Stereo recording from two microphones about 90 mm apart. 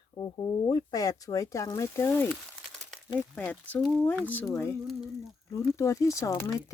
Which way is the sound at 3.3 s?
15° left (ahead or behind).